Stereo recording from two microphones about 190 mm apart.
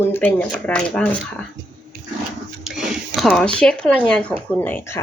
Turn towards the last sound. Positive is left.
turn(degrees=10)  # may be behind; listen again after turning